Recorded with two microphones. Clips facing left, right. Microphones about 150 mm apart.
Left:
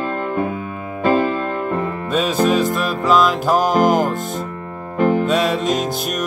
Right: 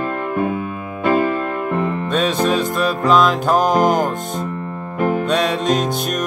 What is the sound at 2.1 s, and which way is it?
Music, 5° left (ahead or behind).